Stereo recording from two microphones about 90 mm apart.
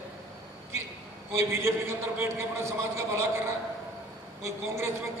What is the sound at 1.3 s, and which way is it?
A man's voice, 30° right (ahead or behind).